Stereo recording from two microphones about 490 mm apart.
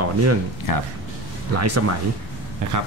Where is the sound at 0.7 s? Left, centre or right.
Left.